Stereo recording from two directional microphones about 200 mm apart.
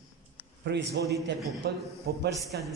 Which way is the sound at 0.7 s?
60° right (ahead or behind).